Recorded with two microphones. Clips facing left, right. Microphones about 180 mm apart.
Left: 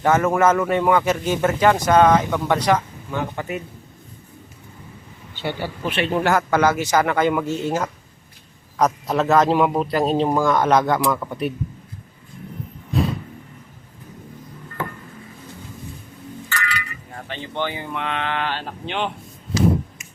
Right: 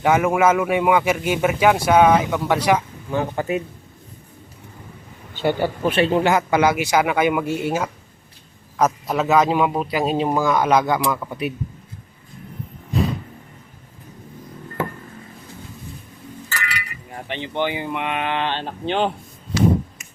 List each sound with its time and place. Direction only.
0.0 s speech: 10° right (ahead or behind)
3.1 s speech: 30° right (ahead or behind)
5.3 s speech: 45° right (ahead or behind)
6.1 s a man's voice: 15° right (ahead or behind)
16.6 s speech: 20° right (ahead or behind)
18.9 s speech: 35° right (ahead or behind)